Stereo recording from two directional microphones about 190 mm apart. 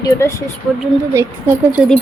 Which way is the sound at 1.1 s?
15° right (ahead or behind).